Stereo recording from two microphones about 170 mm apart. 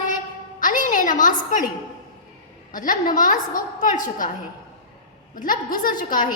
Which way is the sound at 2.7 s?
55° left (ahead or behind).